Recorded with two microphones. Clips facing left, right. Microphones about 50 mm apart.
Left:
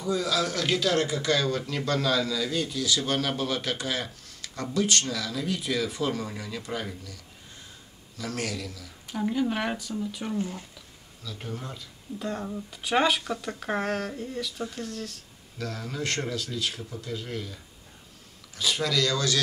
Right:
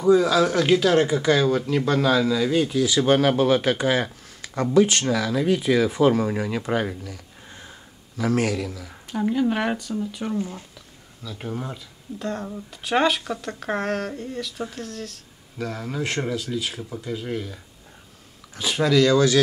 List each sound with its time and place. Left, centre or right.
0.0 s a man's voice: right
9.3 s speech: centre
11.2 s speech: centre
12.2 s speech: centre
15.5 s speech: centre
18.6 s a man's voice: right